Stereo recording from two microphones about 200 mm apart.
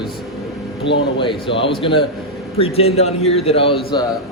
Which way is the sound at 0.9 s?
60° left (ahead or behind).